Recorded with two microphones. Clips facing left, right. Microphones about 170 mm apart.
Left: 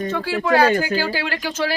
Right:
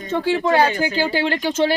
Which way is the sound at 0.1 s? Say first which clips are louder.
Right 4 dB; 25° right (ahead or behind).